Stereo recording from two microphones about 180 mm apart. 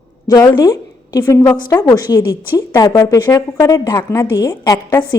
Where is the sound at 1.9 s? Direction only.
20° left (ahead or behind).